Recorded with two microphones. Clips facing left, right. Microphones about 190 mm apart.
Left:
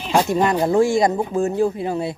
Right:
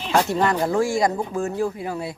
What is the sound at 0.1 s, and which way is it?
Speech, 15° left (ahead or behind).